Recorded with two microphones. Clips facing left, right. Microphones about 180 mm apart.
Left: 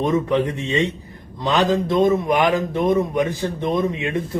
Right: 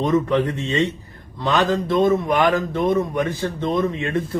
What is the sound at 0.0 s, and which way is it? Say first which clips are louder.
A man's voice: even; 15° left (ahead or behind).